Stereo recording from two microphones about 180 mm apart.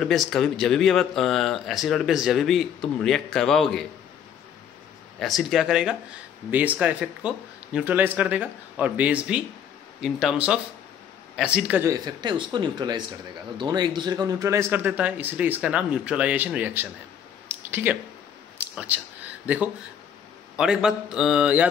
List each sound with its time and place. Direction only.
0.0 s speech: centre (ahead or behind)
5.2 s a man's voice: centre (ahead or behind)
11.9 s a man's voice: 25° right (ahead or behind)
18.6 s a sound: 10° right (ahead or behind)
19.4 s speech: 5° right (ahead or behind)